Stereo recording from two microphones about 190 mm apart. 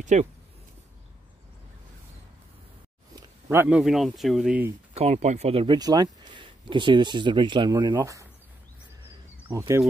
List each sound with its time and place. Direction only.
0.0 s speech: 40° right (ahead or behind)
3.4 s a man's voice: 5° right (ahead or behind)
4.9 s speech: 35° right (ahead or behind); by 8.3 s 15° right (ahead or behind)
9.5 s speech: 15° right (ahead or behind)